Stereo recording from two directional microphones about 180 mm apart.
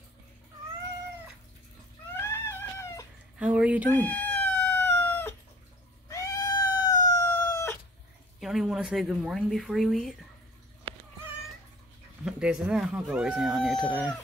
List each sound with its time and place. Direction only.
2.1 s a sound: 15° left (ahead or behind)
3.3 s speech: 5° right (ahead or behind)
3.9 s cat: 10° left (ahead or behind)
8.4 s speech: centre (ahead or behind)
10.9 s cat: 30° right (ahead or behind)
12.3 s speech: 5° right (ahead or behind)